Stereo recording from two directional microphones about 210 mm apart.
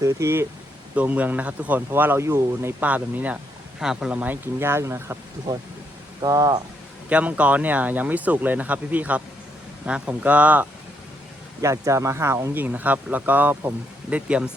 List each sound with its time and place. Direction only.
0.0 s speech: 15° right (ahead or behind)
7.1 s speech: 5° right (ahead or behind)